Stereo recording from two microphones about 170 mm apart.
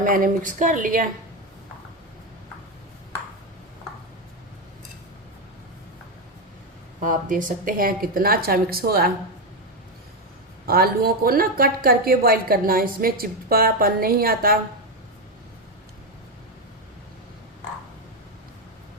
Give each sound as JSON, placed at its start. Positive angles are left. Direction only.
{"t": 0.0, "sound": "speech", "side_deg": -55}
{"t": 7.0, "sound": "speech", "side_deg": -50}
{"t": 10.7, "sound": "speech", "side_deg": -65}